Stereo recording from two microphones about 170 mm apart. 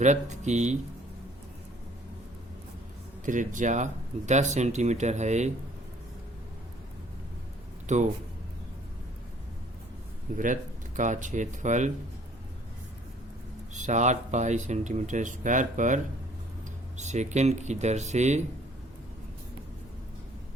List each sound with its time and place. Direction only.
0.0 s speech: 45° right (ahead or behind)
3.2 s speech: 50° right (ahead or behind)
7.9 s speech: 45° right (ahead or behind)
10.3 s speech: 50° right (ahead or behind)
13.7 s speech: 45° right (ahead or behind)
17.0 s speech: 45° right (ahead or behind)